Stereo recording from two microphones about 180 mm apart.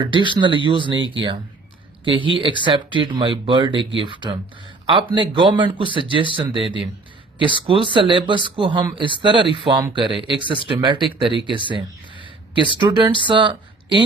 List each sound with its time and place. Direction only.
0.0 s speech: 25° right (ahead or behind)
11.7 s a sound: 25° right (ahead or behind)
12.8 s speech: 25° right (ahead or behind)